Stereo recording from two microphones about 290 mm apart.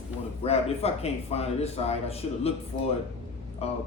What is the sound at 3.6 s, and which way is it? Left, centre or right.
Speech, left.